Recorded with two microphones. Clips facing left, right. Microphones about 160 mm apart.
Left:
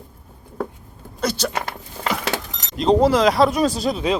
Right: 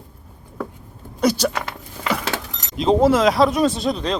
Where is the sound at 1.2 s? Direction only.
10° right (ahead or behind).